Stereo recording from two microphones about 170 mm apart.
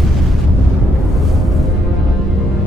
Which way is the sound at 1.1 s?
Centre (ahead or behind).